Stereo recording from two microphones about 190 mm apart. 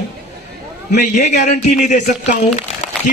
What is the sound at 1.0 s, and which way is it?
Speech, 40° left (ahead or behind).